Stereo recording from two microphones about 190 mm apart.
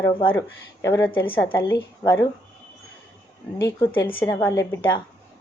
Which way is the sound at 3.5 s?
15° left (ahead or behind).